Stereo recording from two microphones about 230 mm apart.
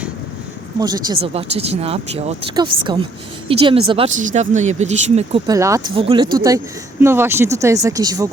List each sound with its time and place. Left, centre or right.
1.2 s speech: right
5.5 s speech: centre
5.9 s speech: right
7.0 s speech: centre